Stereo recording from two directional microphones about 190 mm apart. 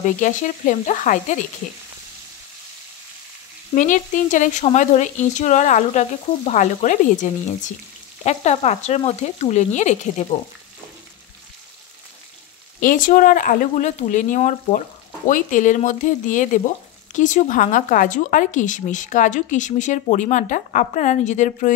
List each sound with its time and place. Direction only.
0.0 s speech: 40° left (ahead or behind)
3.7 s speech: 40° left (ahead or behind)
12.8 s speech: 45° left (ahead or behind)